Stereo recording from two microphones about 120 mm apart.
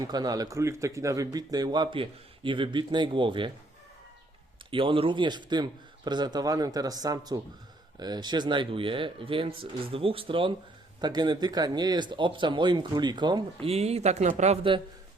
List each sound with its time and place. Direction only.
0.0 s speech: 35° right (ahead or behind)
4.7 s speech: 45° right (ahead or behind)
11.0 s speech: 35° right (ahead or behind)
13.7 s speech: 60° right (ahead or behind)